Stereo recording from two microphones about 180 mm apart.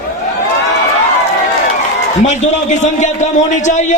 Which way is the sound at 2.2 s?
40° left (ahead or behind).